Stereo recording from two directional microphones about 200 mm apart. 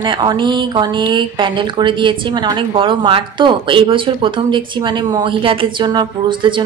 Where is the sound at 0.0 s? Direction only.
20° right (ahead or behind).